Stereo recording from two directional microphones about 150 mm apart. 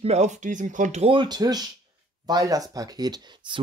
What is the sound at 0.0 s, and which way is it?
Speech, 50° right (ahead or behind).